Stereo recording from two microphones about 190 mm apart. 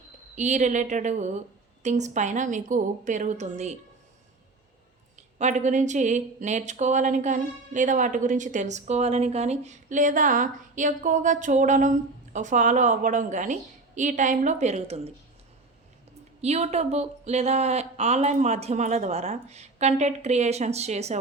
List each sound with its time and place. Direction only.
0.3 s speech: 40° right (ahead or behind)
5.1 s speech: 40° right (ahead or behind)
16.4 s speech: 35° right (ahead or behind)